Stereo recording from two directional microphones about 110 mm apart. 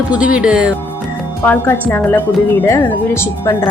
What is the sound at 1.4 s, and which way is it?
Speech, 20° left (ahead or behind).